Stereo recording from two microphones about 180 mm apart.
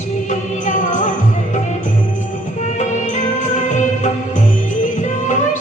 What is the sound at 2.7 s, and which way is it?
Music, 40° left (ahead or behind).